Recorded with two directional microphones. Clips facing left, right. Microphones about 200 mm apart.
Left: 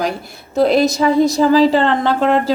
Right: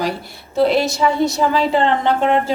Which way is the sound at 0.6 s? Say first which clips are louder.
Left 2 dB; 40° left (ahead or behind).